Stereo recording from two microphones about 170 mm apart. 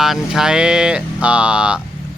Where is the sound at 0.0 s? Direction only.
Centre (ahead or behind).